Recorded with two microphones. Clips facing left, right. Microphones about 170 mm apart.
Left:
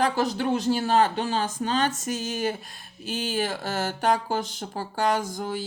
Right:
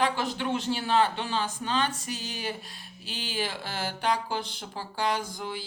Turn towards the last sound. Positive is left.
turn(degrees=45)  # may be behind; listen again after turning